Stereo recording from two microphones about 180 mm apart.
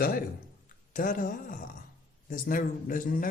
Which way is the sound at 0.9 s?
50° left (ahead or behind).